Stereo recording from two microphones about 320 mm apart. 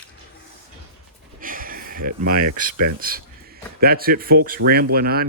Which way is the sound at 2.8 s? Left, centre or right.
Right.